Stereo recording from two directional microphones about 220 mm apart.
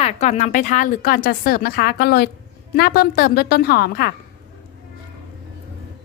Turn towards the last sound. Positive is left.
turn(degrees=45)  # may be behind; listen again after turning